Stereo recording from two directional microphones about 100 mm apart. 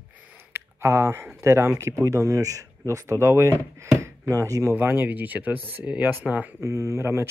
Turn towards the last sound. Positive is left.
turn(degrees=-25)  # may be behind; listen again after turning